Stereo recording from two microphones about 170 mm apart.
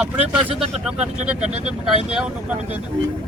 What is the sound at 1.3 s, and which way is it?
Speech, 5° right (ahead or behind).